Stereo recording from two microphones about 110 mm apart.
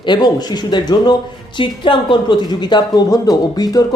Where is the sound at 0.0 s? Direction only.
40° left (ahead or behind).